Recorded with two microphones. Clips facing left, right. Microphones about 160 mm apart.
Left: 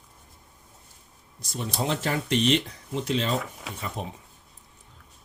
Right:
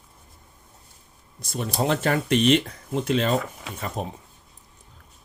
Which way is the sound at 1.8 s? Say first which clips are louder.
Right 5 dB; 55° right (ahead or behind).